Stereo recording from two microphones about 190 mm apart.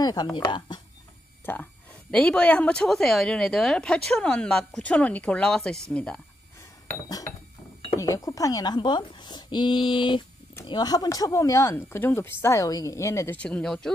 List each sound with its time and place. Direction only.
0.0 s a woman's voice: 20° left (ahead or behind)
1.4 s a woman's voice: 10° left (ahead or behind)
8.0 s a woman's voice: 15° left (ahead or behind)